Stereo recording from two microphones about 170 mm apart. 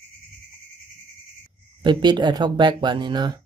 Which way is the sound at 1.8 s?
25° right (ahead or behind).